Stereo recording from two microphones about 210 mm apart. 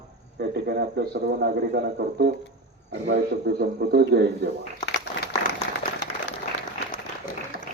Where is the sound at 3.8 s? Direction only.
45° right (ahead or behind).